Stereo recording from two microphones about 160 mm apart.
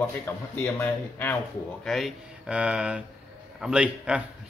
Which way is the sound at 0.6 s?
15° left (ahead or behind).